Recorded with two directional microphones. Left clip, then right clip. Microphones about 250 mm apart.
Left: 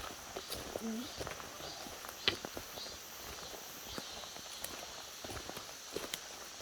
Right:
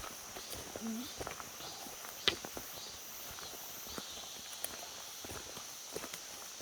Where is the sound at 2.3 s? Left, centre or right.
Right.